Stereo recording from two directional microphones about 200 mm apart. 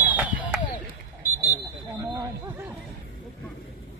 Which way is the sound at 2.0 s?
20° right (ahead or behind).